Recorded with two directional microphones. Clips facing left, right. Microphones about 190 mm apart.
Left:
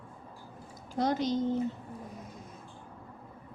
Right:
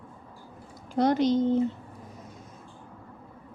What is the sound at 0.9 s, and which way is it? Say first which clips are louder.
Speech: right 6 dB; 65° right (ahead or behind).